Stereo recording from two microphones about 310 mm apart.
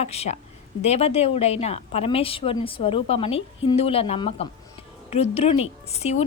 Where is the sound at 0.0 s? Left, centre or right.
Left.